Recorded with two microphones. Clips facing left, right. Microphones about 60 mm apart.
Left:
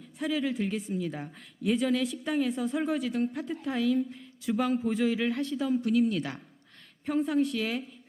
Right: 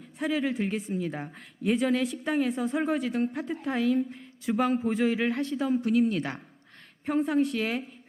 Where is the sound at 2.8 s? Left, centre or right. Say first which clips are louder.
Right 2 dB; right.